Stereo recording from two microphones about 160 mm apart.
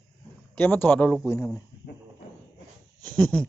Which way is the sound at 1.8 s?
75° left (ahead or behind).